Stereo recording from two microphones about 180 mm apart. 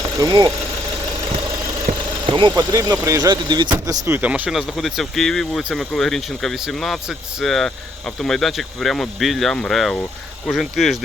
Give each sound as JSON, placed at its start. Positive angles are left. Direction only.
{"t": 0.2, "sound": "speech", "side_deg": -20}
{"t": 1.9, "sound": "engine", "side_deg": -45}
{"t": 2.2, "sound": "speech", "side_deg": -25}
{"t": 3.8, "sound": "speech", "side_deg": -10}